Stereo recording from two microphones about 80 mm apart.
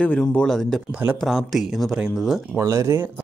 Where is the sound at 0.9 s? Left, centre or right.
Right.